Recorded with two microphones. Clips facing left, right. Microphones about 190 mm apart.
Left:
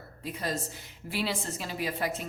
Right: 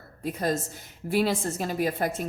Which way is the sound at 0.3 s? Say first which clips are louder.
Right 6 dB; 45° right (ahead or behind).